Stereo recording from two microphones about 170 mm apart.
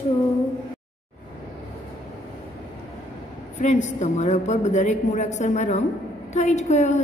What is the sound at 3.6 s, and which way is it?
A woman's voice, 45° left (ahead or behind).